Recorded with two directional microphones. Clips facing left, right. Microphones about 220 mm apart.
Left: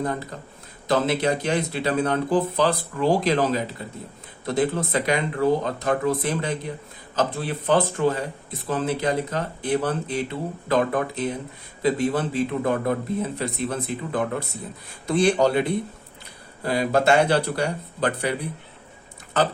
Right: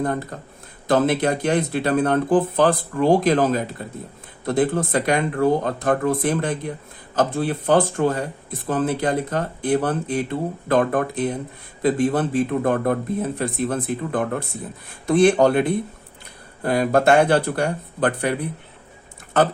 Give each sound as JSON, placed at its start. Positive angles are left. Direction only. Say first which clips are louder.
{"t": 0.0, "sound": "speech", "louder": "right 3 dB", "side_deg": -50}
{"t": 16.6, "sound": "speech", "louder": "right 3 dB", "side_deg": -55}